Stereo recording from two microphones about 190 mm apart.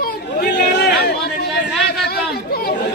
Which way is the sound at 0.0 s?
55° left (ahead or behind).